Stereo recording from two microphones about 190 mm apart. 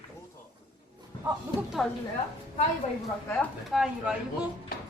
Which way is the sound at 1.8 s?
Centre (ahead or behind).